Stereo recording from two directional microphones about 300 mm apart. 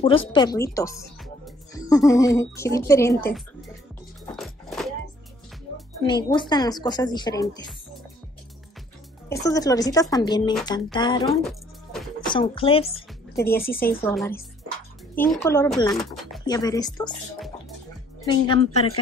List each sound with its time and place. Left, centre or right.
0.0 s speech: centre
4.4 s music: centre
6.3 s speech: centre
9.3 s speech: centre
11.2 s music: centre
12.3 s speech: centre
13.6 s speech: left
14.0 s speech: centre
16.0 s speech: centre
16.4 s speech: centre
18.2 s speech: centre